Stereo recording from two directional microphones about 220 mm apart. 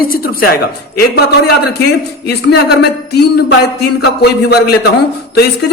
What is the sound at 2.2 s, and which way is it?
A man's voice, 50° left (ahead or behind).